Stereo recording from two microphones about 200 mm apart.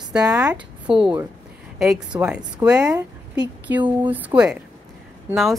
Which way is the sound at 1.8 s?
Centre (ahead or behind).